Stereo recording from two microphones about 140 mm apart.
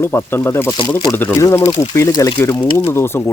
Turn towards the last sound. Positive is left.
turn(degrees=15)  # may be behind; listen again after turning